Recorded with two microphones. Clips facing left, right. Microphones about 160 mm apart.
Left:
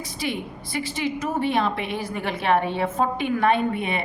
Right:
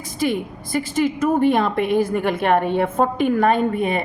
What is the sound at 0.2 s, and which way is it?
A woman's voice, 50° right (ahead or behind).